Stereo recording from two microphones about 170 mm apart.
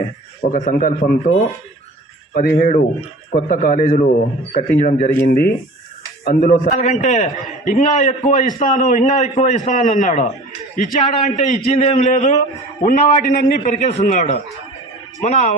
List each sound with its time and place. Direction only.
0.5 s a man's voice: 55° left (ahead or behind)
5.2 s a man's voice: 60° left (ahead or behind); by 15.5 s 40° left (ahead or behind)